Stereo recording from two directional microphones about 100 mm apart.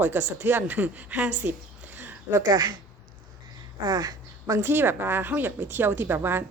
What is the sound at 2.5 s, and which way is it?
Speech, 45° right (ahead or behind).